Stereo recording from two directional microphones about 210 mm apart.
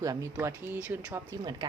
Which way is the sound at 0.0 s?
15° right (ahead or behind).